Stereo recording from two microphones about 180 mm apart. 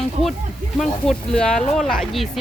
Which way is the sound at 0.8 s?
5° left (ahead or behind).